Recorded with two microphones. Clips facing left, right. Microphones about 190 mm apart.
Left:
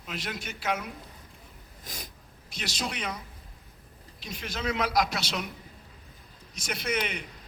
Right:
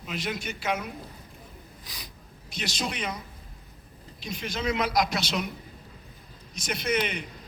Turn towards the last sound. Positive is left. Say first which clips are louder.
# right 3 dB
turn(degrees=10)  # may be behind; listen again after turning